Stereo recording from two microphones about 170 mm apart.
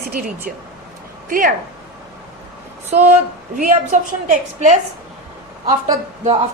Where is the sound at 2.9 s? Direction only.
40° right (ahead or behind).